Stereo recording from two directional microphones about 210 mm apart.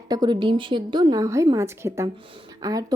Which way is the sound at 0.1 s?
20° right (ahead or behind).